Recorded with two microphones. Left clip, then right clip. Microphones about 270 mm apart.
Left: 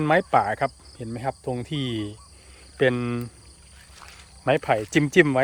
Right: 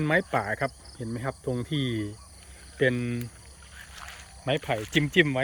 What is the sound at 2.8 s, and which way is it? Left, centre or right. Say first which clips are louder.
Speech: left 4 dB; centre.